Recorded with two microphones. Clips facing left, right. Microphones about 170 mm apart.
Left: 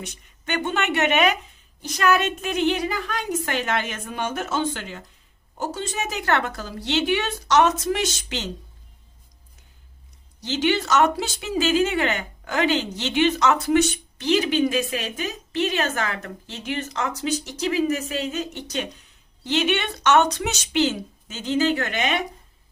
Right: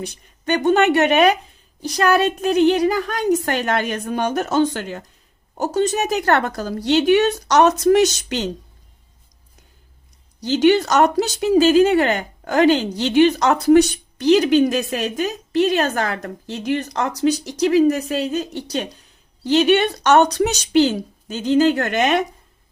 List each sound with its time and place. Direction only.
0.0 s speech: 35° right (ahead or behind)
10.4 s speech: 40° right (ahead or behind)